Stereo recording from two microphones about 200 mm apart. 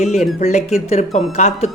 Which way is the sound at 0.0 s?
35° left (ahead or behind).